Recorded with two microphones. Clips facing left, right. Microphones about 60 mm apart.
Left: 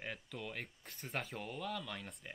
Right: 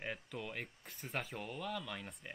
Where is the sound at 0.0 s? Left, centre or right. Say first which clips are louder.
Right 2 dB; centre.